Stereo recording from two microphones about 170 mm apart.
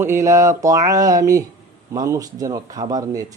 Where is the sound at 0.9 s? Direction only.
20° right (ahead or behind).